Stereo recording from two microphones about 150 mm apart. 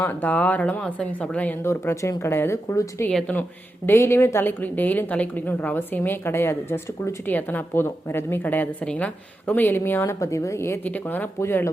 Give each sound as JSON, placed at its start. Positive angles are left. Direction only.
{"t": 0.0, "sound": "a woman's voice", "side_deg": 10}
{"t": 3.1, "sound": "a woman's voice", "side_deg": 5}
{"t": 3.8, "sound": "a woman's voice", "side_deg": 15}